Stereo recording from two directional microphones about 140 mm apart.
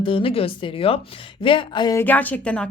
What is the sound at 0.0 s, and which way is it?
A woman's voice, 40° left (ahead or behind).